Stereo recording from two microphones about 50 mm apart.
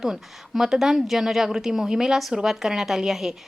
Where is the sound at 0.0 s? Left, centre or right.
Centre.